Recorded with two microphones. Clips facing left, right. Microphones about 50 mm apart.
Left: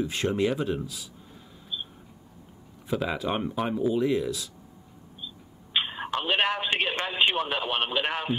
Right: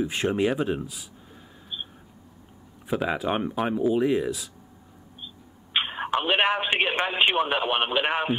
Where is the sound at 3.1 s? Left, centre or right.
Centre.